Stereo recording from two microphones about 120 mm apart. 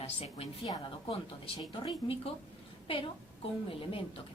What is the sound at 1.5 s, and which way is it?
Speech, 40° left (ahead or behind).